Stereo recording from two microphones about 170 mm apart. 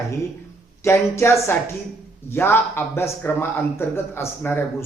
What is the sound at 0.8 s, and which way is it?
A man's voice, 15° left (ahead or behind).